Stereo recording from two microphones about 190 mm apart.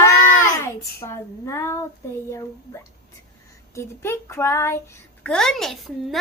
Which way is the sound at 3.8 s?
15° left (ahead or behind).